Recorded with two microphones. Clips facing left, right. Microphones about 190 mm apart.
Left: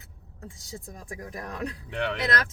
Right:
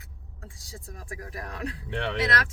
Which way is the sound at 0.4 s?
20° left (ahead or behind).